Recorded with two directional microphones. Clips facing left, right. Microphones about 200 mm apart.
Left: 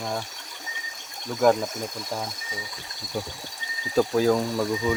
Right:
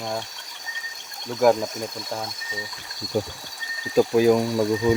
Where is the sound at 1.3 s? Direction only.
10° right (ahead or behind).